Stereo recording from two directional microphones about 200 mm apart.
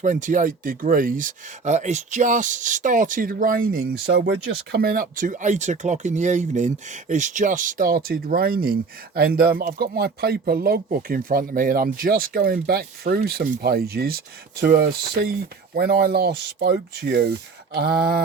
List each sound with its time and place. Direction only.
0.0 s speech: 40° right (ahead or behind)